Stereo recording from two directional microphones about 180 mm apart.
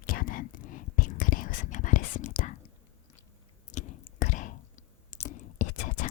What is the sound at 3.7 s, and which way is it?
Whispering, 45° left (ahead or behind).